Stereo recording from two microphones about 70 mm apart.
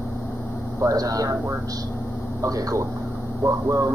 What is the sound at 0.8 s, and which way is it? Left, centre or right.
Speech, right.